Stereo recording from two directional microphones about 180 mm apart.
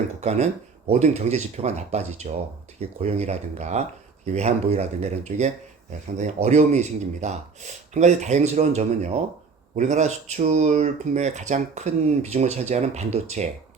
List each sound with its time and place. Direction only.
0.2 s speech: 35° right (ahead or behind)